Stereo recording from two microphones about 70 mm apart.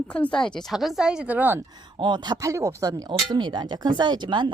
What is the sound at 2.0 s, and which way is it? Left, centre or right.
Speech, right.